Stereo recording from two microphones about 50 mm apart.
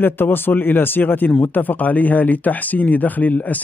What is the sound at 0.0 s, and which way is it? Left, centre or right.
Speech, left.